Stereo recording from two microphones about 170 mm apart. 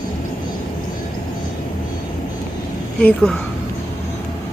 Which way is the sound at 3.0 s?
5° left (ahead or behind).